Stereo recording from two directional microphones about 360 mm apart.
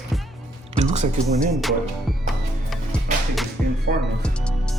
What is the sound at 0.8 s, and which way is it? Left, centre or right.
Speech, centre.